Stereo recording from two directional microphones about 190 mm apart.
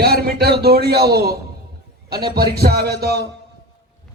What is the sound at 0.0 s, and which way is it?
A man's voice, 55° right (ahead or behind).